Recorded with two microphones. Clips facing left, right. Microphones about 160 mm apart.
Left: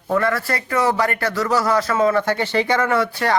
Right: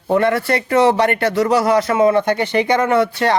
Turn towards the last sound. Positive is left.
turn(degrees=-20)  # may be behind; listen again after turning